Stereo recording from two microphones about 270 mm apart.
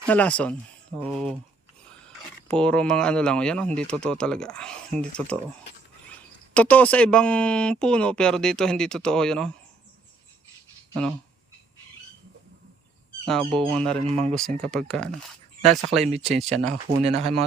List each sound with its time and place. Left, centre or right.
0.1 s speech: centre
2.5 s speech: centre
13.2 s speech: centre
16.8 s speech: right